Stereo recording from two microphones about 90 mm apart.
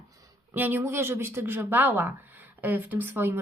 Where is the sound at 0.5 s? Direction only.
20° right (ahead or behind).